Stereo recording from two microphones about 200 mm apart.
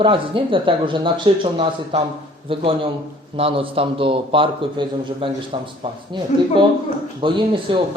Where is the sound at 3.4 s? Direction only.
25° right (ahead or behind).